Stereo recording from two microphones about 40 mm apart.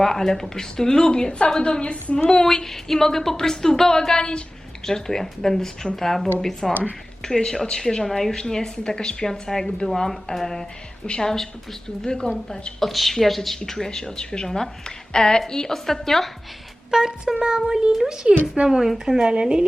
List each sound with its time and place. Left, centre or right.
0.0 s a woman's voice: centre; by 2.1 s left
2.4 s a woman's voice: centre
11.0 s a woman's voice: left
12.8 s a woman's voice: centre
13.7 s a woman's voice: centre
16.9 s a woman's voice: centre